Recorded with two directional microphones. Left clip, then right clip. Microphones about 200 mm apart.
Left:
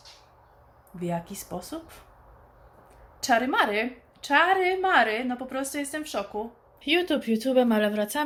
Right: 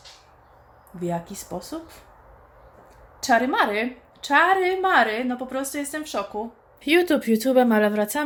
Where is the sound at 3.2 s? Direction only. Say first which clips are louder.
Right 3 dB; 5° right (ahead or behind).